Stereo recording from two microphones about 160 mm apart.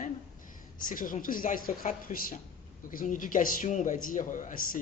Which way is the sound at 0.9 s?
60° left (ahead or behind).